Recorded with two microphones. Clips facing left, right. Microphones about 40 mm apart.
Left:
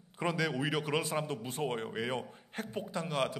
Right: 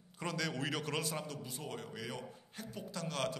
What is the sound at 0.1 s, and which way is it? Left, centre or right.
A man's voice, left.